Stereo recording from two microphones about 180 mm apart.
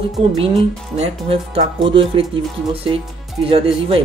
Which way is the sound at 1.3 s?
30° right (ahead or behind).